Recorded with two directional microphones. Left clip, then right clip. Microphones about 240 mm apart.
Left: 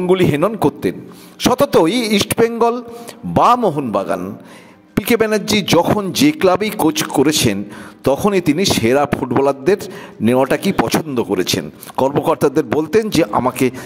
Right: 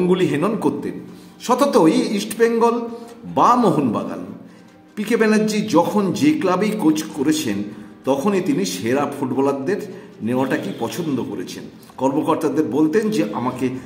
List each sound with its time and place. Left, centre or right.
0.1 s speech: left